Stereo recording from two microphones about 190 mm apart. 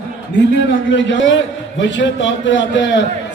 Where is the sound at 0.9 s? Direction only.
70° left (ahead or behind).